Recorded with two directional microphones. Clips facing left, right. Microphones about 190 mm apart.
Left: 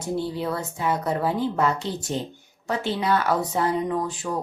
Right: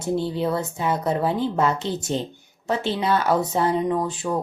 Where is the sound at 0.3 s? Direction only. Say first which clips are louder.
Right 4 dB; 25° right (ahead or behind).